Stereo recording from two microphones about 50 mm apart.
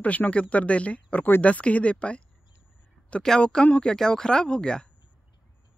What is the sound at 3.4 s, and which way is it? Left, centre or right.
Speech, left.